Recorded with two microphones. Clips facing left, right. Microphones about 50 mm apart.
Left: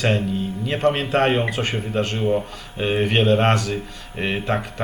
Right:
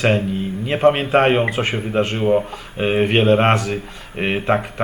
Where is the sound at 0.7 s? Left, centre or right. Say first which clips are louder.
Right 5 dB; centre.